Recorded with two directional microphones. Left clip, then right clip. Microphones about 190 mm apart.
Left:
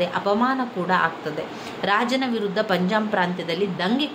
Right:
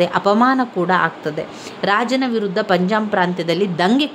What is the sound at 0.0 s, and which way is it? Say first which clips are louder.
A woman's voice: right 7 dB; 45° right (ahead or behind).